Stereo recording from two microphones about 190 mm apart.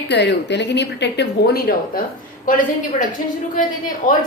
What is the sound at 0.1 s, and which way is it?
A woman's voice, 65° left (ahead or behind).